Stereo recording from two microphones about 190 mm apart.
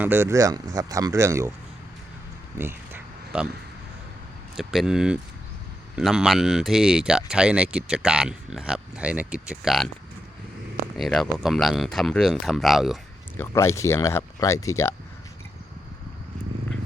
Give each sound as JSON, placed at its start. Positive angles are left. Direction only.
{"t": 0.0, "sound": "speech", "side_deg": -10}
{"t": 2.6, "sound": "a sound", "side_deg": -10}
{"t": 4.5, "sound": "speech", "side_deg": 0}
{"t": 10.9, "sound": "speech", "side_deg": 0}
{"t": 13.3, "sound": "speech", "side_deg": 15}